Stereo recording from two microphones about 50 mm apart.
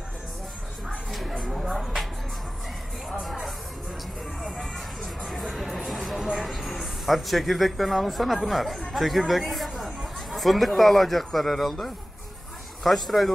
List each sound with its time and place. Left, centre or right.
1.5 s a sound: centre
3.2 s music: centre
6.4 s speech: centre